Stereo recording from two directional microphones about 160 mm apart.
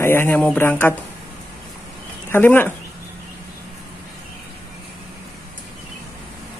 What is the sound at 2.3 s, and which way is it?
Speech, 10° left (ahead or behind).